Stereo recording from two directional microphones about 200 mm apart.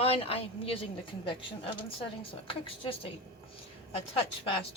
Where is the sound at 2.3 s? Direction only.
25° left (ahead or behind).